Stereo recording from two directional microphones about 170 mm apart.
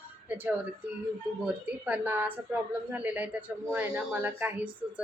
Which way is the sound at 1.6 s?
10° right (ahead or behind).